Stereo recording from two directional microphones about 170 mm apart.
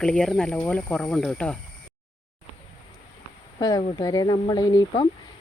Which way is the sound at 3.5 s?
25° left (ahead or behind).